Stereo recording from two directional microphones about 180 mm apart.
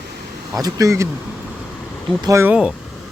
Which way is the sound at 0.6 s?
20° right (ahead or behind).